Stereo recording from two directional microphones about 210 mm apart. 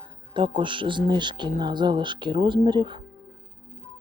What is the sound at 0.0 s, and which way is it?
Speech, 25° right (ahead or behind).